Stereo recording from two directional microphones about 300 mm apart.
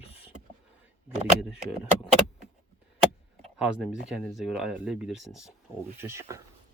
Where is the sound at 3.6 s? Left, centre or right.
Centre.